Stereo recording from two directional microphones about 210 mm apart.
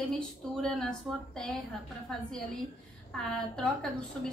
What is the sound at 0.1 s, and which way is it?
A woman's voice, 5° left (ahead or behind).